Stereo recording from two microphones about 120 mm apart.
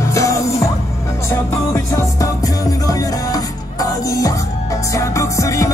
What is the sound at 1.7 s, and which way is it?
Music, 25° left (ahead or behind).